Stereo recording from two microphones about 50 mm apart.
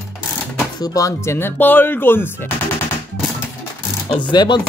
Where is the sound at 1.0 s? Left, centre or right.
Left.